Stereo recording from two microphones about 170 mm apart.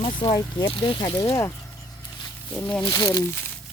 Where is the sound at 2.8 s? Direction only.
20° left (ahead or behind).